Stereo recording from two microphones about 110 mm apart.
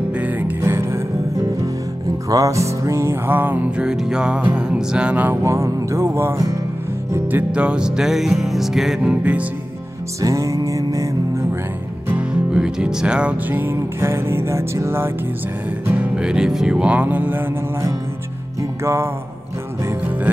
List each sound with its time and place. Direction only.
0.2 s music: 15° right (ahead or behind)
4.6 s speech: 5° right (ahead or behind); by 6.6 s 30° right (ahead or behind)
7.1 s music: 20° right (ahead or behind)
10.2 s music: 30° right (ahead or behind)
12.1 s music: 10° right (ahead or behind)
15.9 s music: 10° right (ahead or behind)